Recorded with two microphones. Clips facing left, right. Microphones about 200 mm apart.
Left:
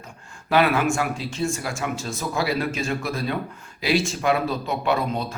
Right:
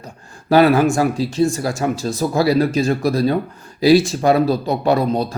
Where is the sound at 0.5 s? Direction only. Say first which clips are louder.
Right 7 dB; 35° right (ahead or behind).